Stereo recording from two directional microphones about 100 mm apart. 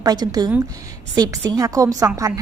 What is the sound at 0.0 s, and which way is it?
A woman's voice, 40° right (ahead or behind).